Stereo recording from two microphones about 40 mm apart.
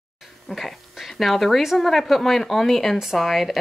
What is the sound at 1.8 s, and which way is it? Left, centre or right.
Speech, centre.